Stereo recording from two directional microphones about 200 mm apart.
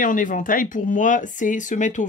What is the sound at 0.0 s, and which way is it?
Speech, 40° left (ahead or behind).